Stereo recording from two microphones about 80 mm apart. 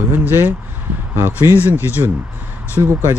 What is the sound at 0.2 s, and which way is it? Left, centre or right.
Speech, right.